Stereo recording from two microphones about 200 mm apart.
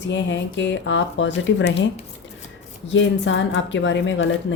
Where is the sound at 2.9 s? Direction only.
65° left (ahead or behind).